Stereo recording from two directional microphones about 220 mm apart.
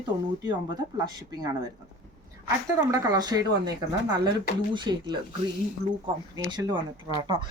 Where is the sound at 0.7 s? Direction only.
20° right (ahead or behind).